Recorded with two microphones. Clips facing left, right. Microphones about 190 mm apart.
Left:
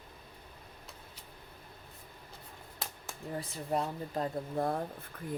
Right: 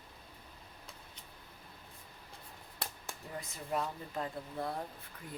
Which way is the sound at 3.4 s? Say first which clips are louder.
Left 3 dB; 35° left (ahead or behind).